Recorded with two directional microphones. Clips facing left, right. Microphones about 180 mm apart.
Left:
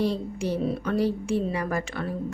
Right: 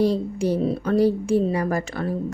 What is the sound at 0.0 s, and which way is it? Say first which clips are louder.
A woman's voice: right 6 dB; 40° right (ahead or behind).